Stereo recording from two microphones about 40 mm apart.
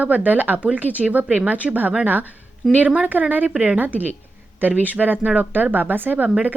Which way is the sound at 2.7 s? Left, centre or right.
Right.